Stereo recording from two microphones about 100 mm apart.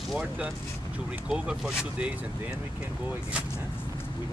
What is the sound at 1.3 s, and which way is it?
Speech, 10° right (ahead or behind).